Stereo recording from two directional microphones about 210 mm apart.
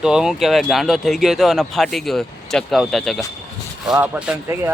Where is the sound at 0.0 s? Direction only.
5° right (ahead or behind).